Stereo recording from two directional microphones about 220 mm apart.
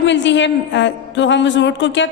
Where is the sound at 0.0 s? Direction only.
55° left (ahead or behind).